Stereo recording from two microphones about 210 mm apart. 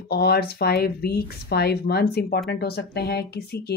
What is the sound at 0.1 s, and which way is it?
Speech, 50° left (ahead or behind).